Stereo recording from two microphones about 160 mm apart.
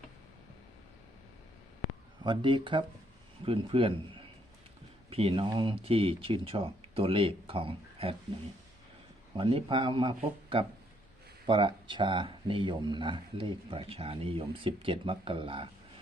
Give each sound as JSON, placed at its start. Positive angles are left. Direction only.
{"t": 2.2, "sound": "speech", "side_deg": -30}
{"t": 9.3, "sound": "speech", "side_deg": -35}